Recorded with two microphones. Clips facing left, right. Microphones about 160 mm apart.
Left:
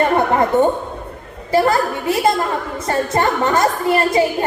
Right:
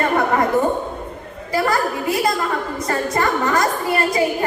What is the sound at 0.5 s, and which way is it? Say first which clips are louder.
A woman's voice: left 3 dB; 25° left (ahead or behind).